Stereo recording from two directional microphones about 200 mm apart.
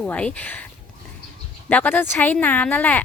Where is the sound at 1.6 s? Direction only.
10° left (ahead or behind).